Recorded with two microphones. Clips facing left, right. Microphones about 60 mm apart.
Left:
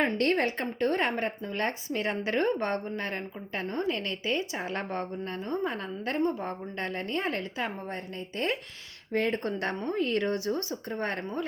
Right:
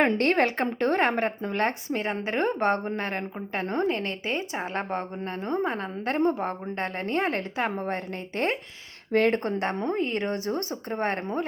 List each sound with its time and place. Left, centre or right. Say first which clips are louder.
0.0 s a woman's voice: right 4 dB; right
9.1 s speech: right 6 dB; right
9.4 s a woman's voice: right 4 dB; right